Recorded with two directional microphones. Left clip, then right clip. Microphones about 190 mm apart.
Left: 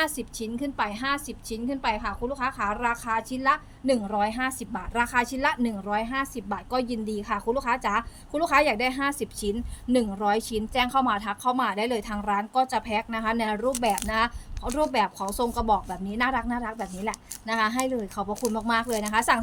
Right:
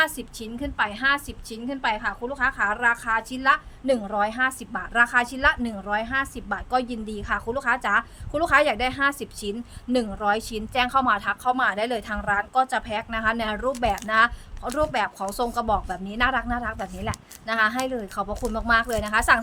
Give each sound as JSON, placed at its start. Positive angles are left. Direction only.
{"t": 0.0, "sound": "a woman's voice", "side_deg": -15}